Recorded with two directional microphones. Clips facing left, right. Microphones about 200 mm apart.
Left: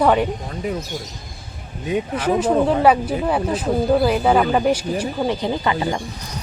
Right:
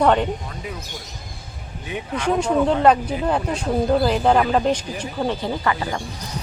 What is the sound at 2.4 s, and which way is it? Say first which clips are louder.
Speech: left 1 dB; 5° left (ahead or behind).